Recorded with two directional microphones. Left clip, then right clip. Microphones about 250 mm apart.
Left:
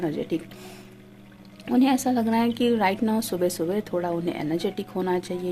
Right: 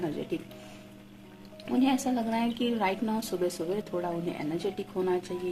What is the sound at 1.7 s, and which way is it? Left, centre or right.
A woman's voice, left.